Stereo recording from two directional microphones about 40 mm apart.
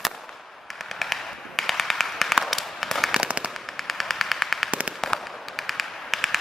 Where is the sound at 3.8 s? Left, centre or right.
Centre.